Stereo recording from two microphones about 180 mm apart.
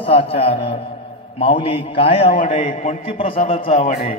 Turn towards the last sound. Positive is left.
turn(degrees=30)  # may be behind; listen again after turning